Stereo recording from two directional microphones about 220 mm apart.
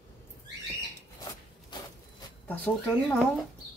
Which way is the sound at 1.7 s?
20° left (ahead or behind).